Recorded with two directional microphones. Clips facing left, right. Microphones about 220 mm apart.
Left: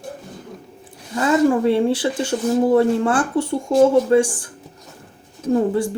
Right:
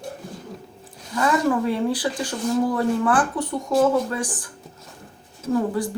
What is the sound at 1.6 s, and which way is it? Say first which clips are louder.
Speech: left 5 dB; 25° left (ahead or behind).